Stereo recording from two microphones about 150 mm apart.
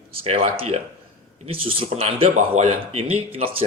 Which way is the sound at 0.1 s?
40° right (ahead or behind).